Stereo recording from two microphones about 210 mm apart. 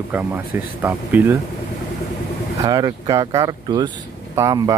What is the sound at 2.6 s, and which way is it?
Speech, 15° right (ahead or behind).